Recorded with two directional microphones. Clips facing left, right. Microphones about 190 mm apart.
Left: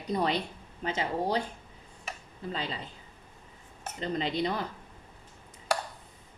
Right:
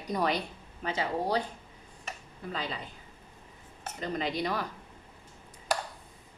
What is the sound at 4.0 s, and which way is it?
Speech, 25° left (ahead or behind).